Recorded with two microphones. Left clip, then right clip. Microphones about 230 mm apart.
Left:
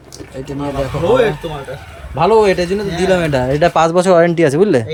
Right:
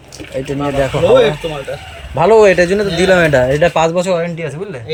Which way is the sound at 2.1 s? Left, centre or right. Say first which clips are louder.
Right 3 dB; centre.